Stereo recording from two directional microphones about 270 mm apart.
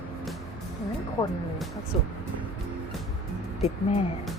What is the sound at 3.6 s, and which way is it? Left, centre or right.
Speech, left.